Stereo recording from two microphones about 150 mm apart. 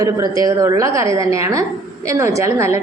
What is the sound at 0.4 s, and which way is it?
A woman's voice, 20° right (ahead or behind).